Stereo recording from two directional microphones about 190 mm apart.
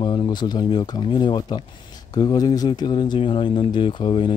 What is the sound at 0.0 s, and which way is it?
Speech, 25° left (ahead or behind).